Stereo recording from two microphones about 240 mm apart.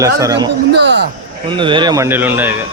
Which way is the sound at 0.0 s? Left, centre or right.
Centre.